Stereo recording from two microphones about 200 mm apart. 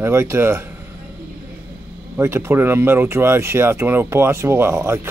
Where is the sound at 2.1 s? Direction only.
10° right (ahead or behind).